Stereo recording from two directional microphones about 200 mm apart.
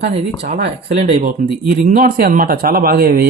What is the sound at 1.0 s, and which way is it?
Speech, 35° right (ahead or behind).